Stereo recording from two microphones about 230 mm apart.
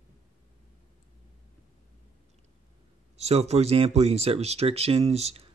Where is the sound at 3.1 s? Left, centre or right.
Right.